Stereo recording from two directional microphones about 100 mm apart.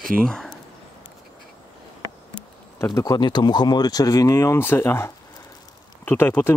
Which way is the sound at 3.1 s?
45° left (ahead or behind).